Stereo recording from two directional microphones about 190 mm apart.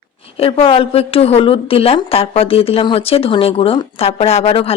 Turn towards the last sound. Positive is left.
turn(degrees=30)  # may be behind; listen again after turning